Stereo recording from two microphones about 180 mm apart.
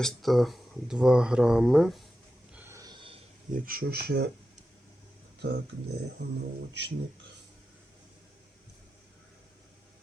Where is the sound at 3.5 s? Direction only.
55° right (ahead or behind).